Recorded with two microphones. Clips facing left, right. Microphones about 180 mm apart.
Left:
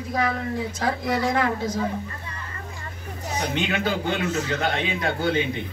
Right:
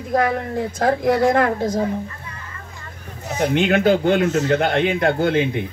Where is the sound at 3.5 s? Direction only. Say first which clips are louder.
Right 10 dB; 55° right (ahead or behind).